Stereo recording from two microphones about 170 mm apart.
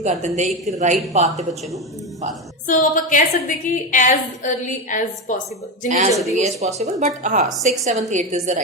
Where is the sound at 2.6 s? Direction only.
50° left (ahead or behind).